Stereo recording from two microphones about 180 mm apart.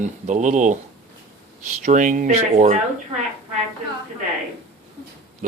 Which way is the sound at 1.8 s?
45° right (ahead or behind).